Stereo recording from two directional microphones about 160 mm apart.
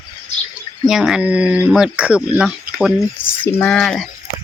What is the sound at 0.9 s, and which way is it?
Speech, 5° right (ahead or behind).